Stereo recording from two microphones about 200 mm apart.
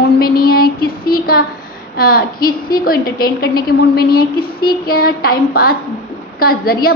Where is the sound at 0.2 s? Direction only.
50° left (ahead or behind).